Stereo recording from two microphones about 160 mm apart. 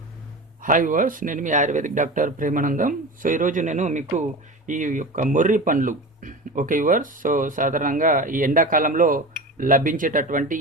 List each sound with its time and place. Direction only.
0.6 s speech: 55° right (ahead or behind)